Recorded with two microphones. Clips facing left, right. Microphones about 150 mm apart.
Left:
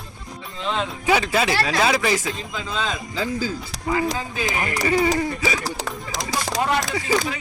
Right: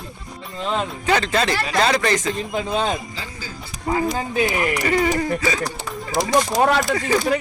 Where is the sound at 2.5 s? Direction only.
55° right (ahead or behind).